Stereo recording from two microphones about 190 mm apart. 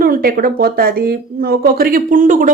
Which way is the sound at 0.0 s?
50° right (ahead or behind).